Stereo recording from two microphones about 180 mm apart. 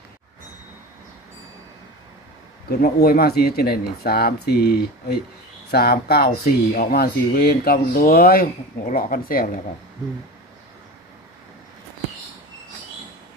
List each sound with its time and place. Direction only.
2.6 s speech: 60° left (ahead or behind)